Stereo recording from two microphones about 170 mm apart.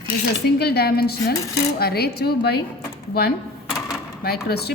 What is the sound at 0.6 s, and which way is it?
A woman's voice, 70° left (ahead or behind).